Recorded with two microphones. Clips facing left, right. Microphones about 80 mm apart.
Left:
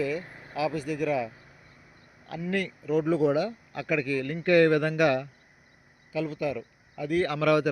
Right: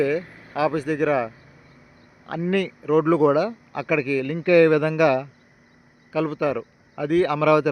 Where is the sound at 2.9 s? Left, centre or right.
Right.